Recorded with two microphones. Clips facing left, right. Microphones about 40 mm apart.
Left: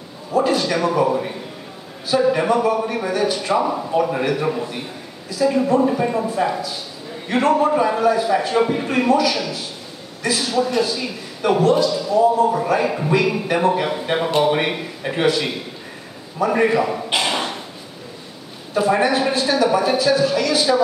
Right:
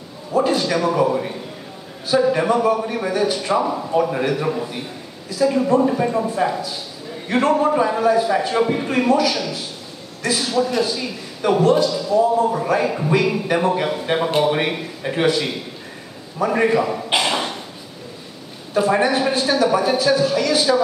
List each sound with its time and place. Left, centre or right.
0.3 s a man's voice: centre
2.0 s a man's voice: centre
16.3 s a man's voice: centre
17.2 s a sound: centre
18.7 s a man's voice: centre